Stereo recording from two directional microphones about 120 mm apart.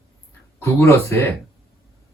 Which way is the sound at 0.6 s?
25° left (ahead or behind).